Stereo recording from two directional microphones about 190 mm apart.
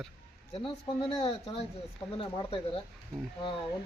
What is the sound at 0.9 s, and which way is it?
Speech, 30° left (ahead or behind).